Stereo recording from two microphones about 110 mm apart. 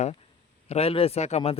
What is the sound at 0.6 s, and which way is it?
Speech, 65° left (ahead or behind).